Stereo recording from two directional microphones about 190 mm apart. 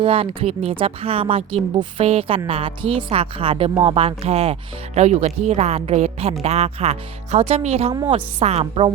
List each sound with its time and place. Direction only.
0.0 s speech: 30° right (ahead or behind)